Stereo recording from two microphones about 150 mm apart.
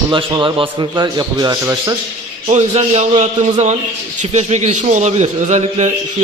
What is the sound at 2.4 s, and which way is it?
A man's voice, 45° right (ahead or behind).